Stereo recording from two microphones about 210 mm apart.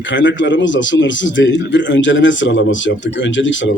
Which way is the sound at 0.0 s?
60° left (ahead or behind).